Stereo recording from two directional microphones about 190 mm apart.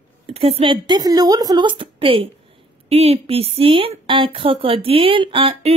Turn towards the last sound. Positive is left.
turn(degrees=-30)  # may be behind; listen again after turning